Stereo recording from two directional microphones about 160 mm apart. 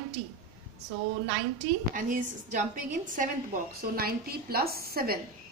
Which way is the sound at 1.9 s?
55° right (ahead or behind).